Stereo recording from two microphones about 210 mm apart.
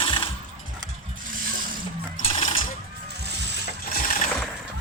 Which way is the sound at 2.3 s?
30° left (ahead or behind).